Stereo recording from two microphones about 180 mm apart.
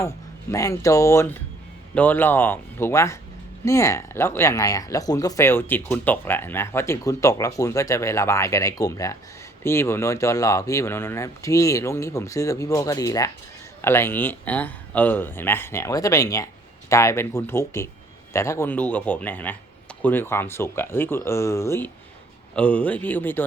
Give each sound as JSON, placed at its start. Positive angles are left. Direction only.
{"t": 0.5, "sound": "speech", "side_deg": 15}